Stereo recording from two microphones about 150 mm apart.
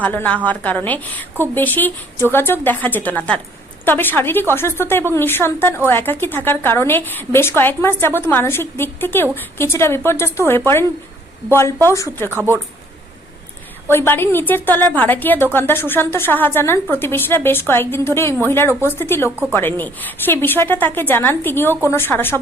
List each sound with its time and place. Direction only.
0.0 s a woman's voice: 10° left (ahead or behind)
12.3 s speech: 15° right (ahead or behind)
13.9 s a woman's voice: 15° left (ahead or behind)